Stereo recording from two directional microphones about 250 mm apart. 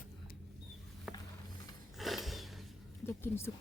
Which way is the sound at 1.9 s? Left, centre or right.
Centre.